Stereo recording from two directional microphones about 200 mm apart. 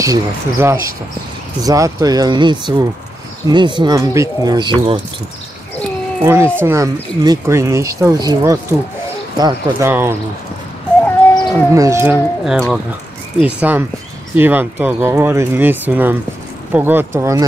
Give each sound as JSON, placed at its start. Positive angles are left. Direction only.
{"t": 0.0, "sound": "speech", "side_deg": -15}
{"t": 6.2, "sound": "speech", "side_deg": -15}
{"t": 11.7, "sound": "speech", "side_deg": -15}
{"t": 12.5, "sound": "speech", "side_deg": 5}
{"t": 13.4, "sound": "speech", "side_deg": -5}